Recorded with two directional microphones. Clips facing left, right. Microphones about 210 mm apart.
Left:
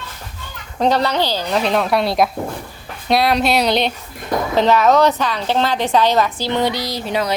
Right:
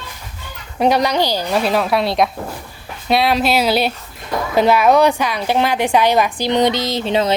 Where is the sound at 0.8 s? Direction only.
10° right (ahead or behind).